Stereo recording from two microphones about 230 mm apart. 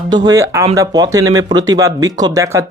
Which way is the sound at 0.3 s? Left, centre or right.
Centre.